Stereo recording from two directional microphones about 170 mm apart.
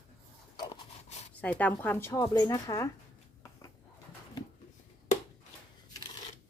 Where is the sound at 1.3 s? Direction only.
10° left (ahead or behind).